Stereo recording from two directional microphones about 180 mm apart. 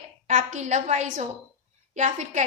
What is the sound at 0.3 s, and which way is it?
A woman's voice, 40° right (ahead or behind).